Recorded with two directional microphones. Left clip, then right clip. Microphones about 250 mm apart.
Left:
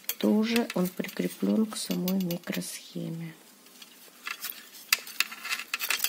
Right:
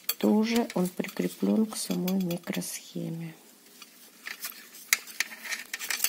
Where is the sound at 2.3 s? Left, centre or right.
Centre.